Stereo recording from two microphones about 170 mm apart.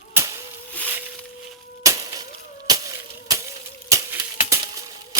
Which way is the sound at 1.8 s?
20° right (ahead or behind).